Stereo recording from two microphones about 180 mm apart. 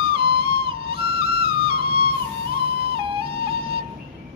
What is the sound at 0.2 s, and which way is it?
Music, 30° right (ahead or behind).